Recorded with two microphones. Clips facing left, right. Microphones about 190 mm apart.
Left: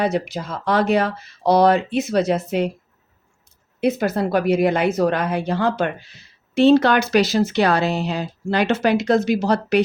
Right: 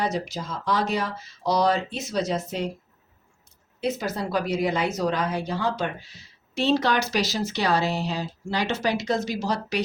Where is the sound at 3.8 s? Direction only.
60° left (ahead or behind).